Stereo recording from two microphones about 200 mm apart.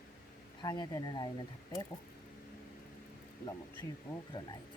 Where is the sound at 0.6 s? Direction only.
20° left (ahead or behind).